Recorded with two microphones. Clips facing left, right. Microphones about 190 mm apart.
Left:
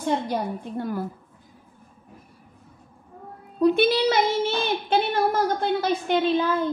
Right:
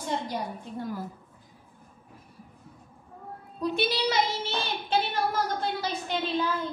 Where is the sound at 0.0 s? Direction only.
60° left (ahead or behind).